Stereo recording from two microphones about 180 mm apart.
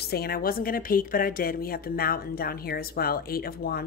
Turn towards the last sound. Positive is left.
turn(degrees=55)  # may be behind; listen again after turning